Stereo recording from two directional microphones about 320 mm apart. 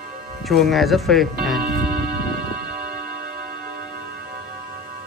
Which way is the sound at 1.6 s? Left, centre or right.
Right.